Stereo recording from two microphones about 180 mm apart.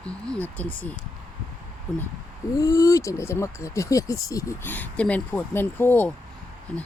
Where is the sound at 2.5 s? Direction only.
20° left (ahead or behind).